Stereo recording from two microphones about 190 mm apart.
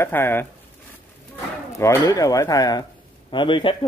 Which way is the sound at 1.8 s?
15° left (ahead or behind).